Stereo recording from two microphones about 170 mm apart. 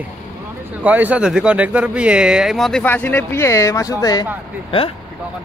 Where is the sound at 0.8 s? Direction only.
10° right (ahead or behind); by 4.2 s 20° left (ahead or behind).